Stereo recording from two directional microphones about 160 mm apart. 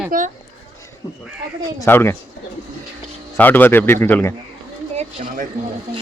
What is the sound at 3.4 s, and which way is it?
Speech, 10° left (ahead or behind).